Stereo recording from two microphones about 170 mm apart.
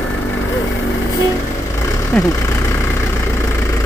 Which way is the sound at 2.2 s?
15° left (ahead or behind).